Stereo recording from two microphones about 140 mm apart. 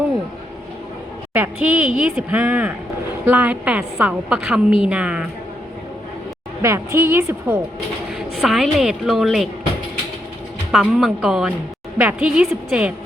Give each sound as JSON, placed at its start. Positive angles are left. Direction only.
{"t": 1.3, "sound": "a woman's voice", "side_deg": -10}
{"t": 6.6, "sound": "a woman's voice", "side_deg": -20}
{"t": 8.4, "sound": "a woman's voice", "side_deg": 0}
{"t": 10.7, "sound": "a woman's voice", "side_deg": -5}